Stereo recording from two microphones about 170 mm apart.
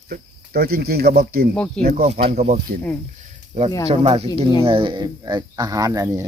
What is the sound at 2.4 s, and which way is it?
Speech, 60° right (ahead or behind).